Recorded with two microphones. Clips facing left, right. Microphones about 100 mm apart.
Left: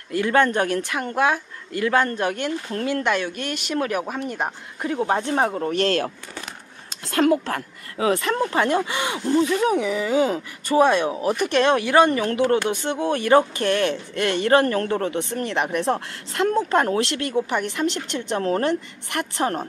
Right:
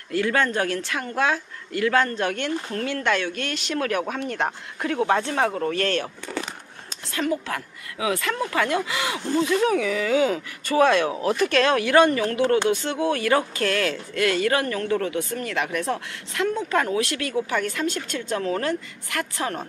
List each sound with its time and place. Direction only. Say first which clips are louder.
0.1 s speech: left 3 dB; 20° left (ahead or behind)
5.0 s speech: left 1 dB; 20° left (ahead or behind)
7.1 s a woman's voice: left 7 dB; 55° left (ahead or behind)
7.4 s speech: left 3 dB; 40° left (ahead or behind)
10.8 s speech: left 1 dB; 15° left (ahead or behind); by 17.0 s 40° left (ahead or behind)
17.5 s speech: left 2 dB; 20° left (ahead or behind)
18.4 s speech: left 5 dB; 35° left (ahead or behind)